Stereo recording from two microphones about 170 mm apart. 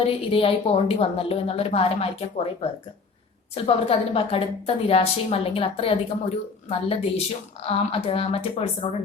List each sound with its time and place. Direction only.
0.0 s a woman's voice: 35° left (ahead or behind)